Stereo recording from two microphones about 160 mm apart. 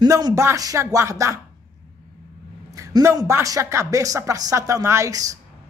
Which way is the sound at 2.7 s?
20° right (ahead or behind).